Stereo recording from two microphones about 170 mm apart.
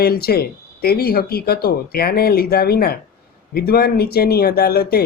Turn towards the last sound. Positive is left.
turn(degrees=65)  # may be behind; listen again after turning